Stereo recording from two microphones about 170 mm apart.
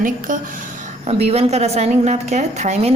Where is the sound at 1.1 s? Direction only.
35° right (ahead or behind).